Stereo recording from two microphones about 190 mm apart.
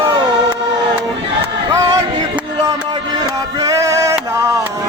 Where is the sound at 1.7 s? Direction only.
15° right (ahead or behind).